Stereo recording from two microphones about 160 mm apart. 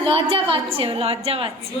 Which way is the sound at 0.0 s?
35° right (ahead or behind).